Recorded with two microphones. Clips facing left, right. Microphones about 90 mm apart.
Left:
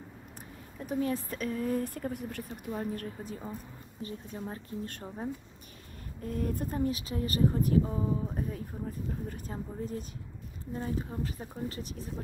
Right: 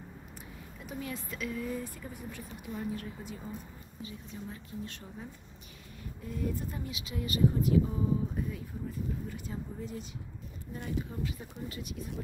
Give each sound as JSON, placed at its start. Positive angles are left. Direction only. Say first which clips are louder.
{"t": 0.7, "sound": "speech", "louder": "left 9 dB", "side_deg": 40}
{"t": 2.7, "sound": "speech", "louder": "left 2 dB", "side_deg": 45}